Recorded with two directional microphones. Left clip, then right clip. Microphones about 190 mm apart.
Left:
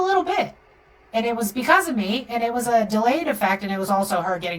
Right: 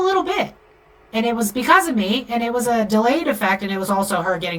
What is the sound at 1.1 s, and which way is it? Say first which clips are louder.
A woman's voice: right 2 dB; 25° right (ahead or behind).